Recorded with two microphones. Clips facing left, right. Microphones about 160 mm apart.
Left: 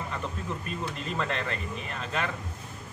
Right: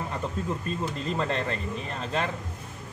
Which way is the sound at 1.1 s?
30° right (ahead or behind).